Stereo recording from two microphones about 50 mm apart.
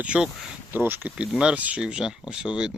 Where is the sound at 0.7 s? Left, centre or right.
Right.